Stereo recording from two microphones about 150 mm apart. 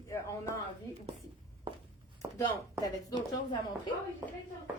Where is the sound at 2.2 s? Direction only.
20° right (ahead or behind).